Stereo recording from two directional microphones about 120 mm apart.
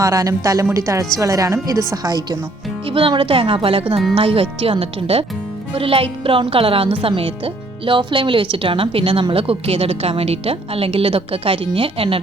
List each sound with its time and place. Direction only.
0.0 s a woman's voice: 30° right (ahead or behind)
2.8 s speech: 50° right (ahead or behind)